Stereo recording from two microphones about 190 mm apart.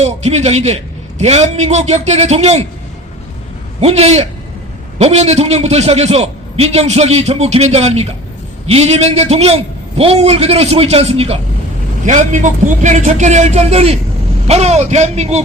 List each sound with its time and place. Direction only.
0.0 s a man's voice: 35° right (ahead or behind)
3.8 s a man's voice: 35° right (ahead or behind)